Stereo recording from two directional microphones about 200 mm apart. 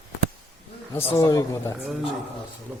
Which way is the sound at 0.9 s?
15° left (ahead or behind).